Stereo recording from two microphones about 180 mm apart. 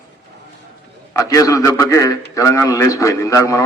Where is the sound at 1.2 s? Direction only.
20° left (ahead or behind).